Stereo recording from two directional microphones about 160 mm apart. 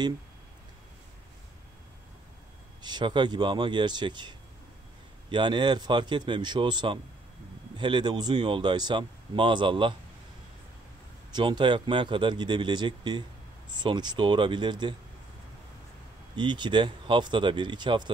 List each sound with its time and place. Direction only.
2.8 s speech: 30° right (ahead or behind)
11.3 s speech: 30° right (ahead or behind)
16.3 s speech: 30° right (ahead or behind)